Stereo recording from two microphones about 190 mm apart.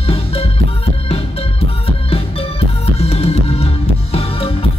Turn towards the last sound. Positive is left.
turn(degrees=30)  # may be behind; listen again after turning